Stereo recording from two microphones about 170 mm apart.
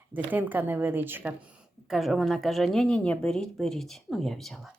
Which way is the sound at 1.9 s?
Centre (ahead or behind).